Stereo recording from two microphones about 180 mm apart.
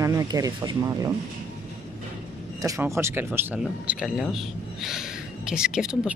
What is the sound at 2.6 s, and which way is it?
Speech, 15° right (ahead or behind).